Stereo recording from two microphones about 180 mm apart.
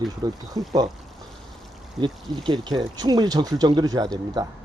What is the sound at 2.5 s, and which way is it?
Speech, 25° right (ahead or behind).